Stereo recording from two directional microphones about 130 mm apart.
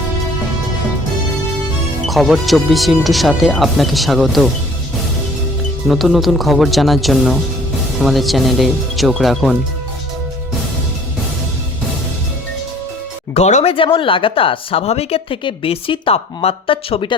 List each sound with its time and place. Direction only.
2.0 s speech: centre (ahead or behind)
5.9 s speech: centre (ahead or behind)
13.3 s speech: 60° left (ahead or behind)
13.7 s a woman's voice: 40° left (ahead or behind)